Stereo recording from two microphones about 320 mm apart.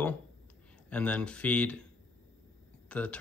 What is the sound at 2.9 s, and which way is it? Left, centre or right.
Speech, centre.